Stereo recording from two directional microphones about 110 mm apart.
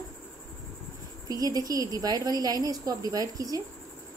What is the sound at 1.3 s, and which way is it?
A woman's voice, 35° right (ahead or behind).